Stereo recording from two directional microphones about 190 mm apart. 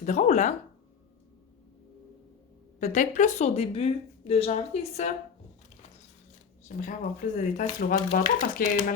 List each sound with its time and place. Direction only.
0.0 s speech: 40° left (ahead or behind)
2.8 s speech: 40° left (ahead or behind)
6.7 s speech: 45° left (ahead or behind)